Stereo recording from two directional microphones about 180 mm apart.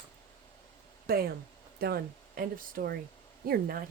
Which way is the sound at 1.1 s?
55° right (ahead or behind).